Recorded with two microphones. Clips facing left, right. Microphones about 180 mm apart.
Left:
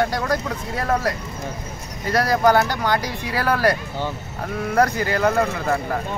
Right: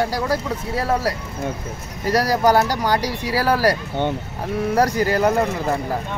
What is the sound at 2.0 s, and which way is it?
Speech, 35° right (ahead or behind).